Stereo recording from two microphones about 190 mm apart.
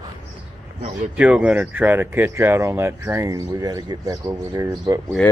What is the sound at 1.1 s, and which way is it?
Speech, 5° right (ahead or behind).